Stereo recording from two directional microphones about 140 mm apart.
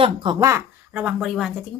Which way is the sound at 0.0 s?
35° right (ahead or behind).